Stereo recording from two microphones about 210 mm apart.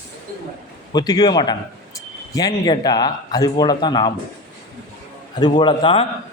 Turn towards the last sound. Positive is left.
turn(degrees=25)  # may be behind; listen again after turning